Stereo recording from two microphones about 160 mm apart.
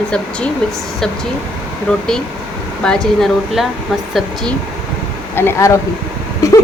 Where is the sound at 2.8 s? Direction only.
5° left (ahead or behind).